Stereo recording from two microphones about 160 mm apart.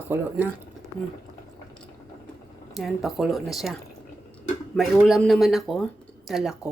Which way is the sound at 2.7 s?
Centre (ahead or behind).